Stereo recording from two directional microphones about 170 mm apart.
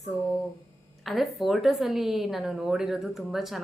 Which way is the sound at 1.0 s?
Centre (ahead or behind).